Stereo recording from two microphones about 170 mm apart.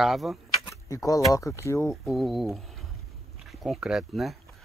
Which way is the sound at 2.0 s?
Centre (ahead or behind).